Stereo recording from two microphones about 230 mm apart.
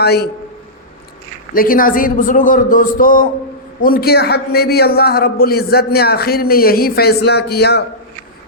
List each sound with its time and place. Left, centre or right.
0.0 s a man's voice: left
1.5 s a man's voice: left